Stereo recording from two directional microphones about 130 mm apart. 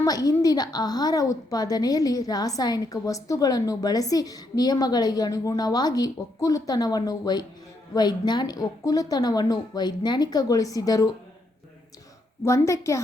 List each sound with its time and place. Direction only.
0.0 s a woman's voice: 30° left (ahead or behind)
12.4 s a woman's voice: 20° left (ahead or behind)